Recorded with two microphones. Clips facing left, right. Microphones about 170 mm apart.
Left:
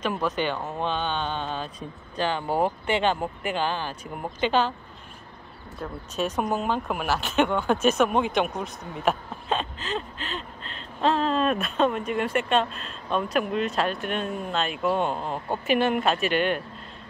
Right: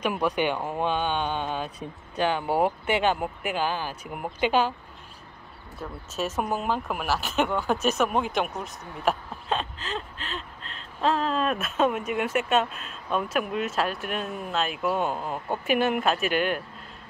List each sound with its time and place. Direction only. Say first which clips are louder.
0.0 s speech: right 1 dB; 10° right (ahead or behind)
5.8 s speech: left 2 dB; 5° right (ahead or behind)